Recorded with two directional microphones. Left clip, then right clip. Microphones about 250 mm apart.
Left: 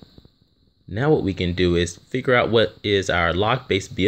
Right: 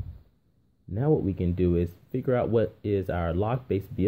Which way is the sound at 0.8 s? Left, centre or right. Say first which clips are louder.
Left 6 dB; centre.